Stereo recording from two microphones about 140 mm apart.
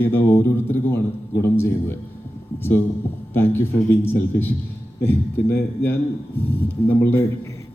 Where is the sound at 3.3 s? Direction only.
15° left (ahead or behind).